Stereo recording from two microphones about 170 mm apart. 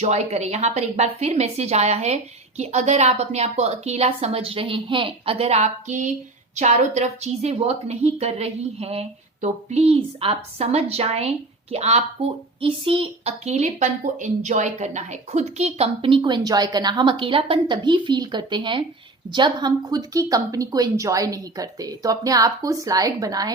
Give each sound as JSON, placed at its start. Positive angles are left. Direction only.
{"t": 0.0, "sound": "speech", "side_deg": -40}